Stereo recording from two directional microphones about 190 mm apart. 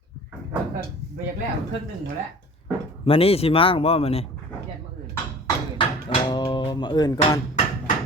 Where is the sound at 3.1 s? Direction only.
30° left (ahead or behind).